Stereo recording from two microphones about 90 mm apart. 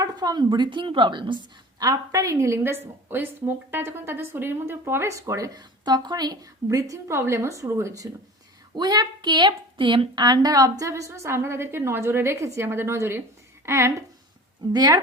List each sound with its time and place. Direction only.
0.0 s a woman's voice: 50° right (ahead or behind)
1.8 s a woman's voice: 40° right (ahead or behind)
5.2 s a woman's voice: 45° right (ahead or behind)
8.7 s a woman's voice: 50° right (ahead or behind); by 13.9 s 30° right (ahead or behind)
14.7 s speech: 50° right (ahead or behind)